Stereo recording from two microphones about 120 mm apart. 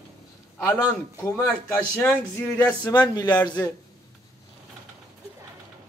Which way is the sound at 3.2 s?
35° left (ahead or behind).